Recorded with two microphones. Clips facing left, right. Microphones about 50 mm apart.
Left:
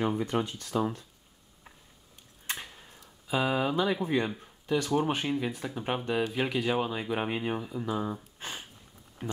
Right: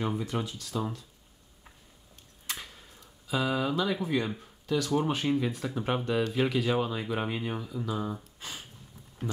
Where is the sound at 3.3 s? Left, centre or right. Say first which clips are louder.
Left 1 dB; left.